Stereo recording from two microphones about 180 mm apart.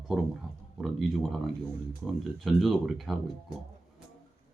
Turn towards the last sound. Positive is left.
turn(degrees=0)  # may be behind; listen again after turning